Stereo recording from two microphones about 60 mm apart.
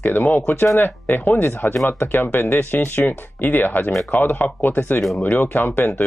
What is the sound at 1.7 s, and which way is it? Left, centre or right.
Speech, left.